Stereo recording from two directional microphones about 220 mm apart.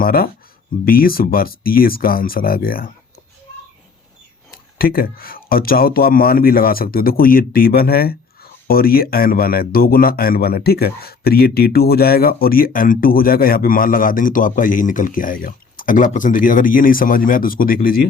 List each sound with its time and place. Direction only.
0.0 s a man's voice: 40° left (ahead or behind)
4.8 s a man's voice: 40° left (ahead or behind)